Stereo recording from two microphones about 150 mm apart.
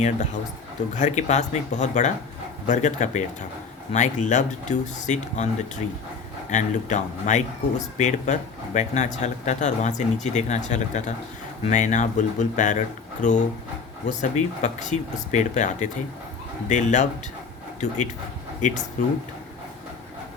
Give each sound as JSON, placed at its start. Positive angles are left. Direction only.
{"t": 0.9, "sound": "speech", "side_deg": 55}